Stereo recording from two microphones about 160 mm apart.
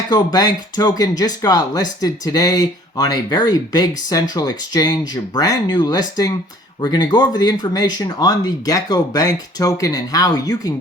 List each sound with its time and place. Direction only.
0.1 s speech: 25° left (ahead or behind)